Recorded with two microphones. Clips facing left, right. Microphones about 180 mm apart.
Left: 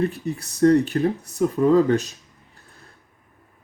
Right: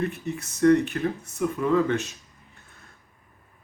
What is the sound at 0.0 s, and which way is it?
Speech, 35° left (ahead or behind).